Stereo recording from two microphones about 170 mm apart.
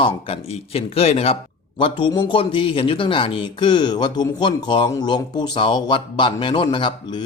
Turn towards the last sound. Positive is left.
turn(degrees=30)  # may be behind; listen again after turning